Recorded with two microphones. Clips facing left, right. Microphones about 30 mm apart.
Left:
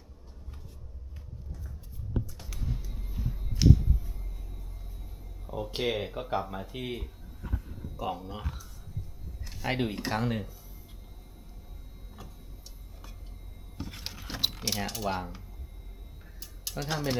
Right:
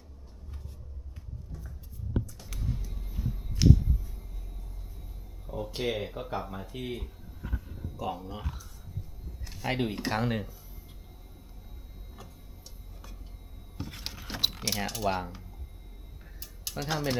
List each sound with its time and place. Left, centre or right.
2.5 s music: centre
5.5 s speech: centre
7.4 s music: centre
7.9 s speech: centre
13.7 s keys jangling: centre
16.4 s tick-tock: centre